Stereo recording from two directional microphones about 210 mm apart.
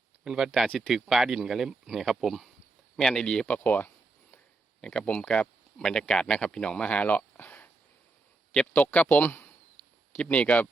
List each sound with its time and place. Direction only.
0.3 s speech: 5° right (ahead or behind)